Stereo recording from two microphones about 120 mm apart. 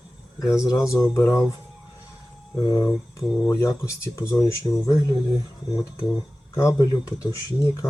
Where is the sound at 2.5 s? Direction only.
35° left (ahead or behind).